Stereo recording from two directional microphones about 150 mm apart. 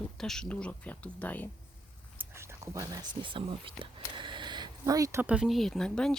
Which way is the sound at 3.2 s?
35° right (ahead or behind).